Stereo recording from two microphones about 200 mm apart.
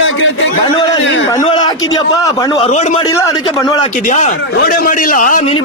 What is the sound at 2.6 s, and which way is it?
Speech, 35° left (ahead or behind).